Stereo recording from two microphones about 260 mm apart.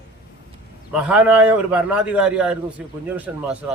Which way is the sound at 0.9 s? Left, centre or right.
Centre.